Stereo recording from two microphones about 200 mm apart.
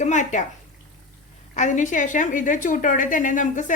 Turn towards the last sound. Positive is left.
turn(degrees=40)  # may be behind; listen again after turning